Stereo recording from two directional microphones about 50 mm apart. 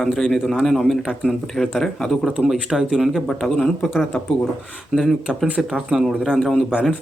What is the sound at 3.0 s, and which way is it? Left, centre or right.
Speech, centre.